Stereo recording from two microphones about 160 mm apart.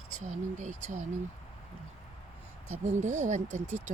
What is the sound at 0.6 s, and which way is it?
Speech, 50° right (ahead or behind).